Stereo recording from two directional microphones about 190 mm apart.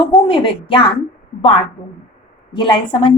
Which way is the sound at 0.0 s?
25° left (ahead or behind).